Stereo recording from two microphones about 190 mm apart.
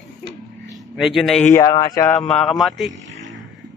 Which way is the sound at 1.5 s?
15° left (ahead or behind).